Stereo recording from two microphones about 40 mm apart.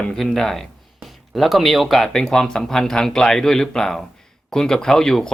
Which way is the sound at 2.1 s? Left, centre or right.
Centre.